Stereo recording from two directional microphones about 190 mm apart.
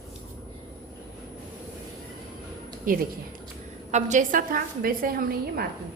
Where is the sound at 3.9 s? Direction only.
40° right (ahead or behind).